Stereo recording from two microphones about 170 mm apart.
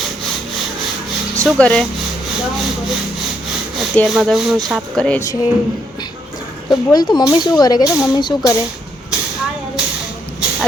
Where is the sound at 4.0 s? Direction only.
Centre (ahead or behind).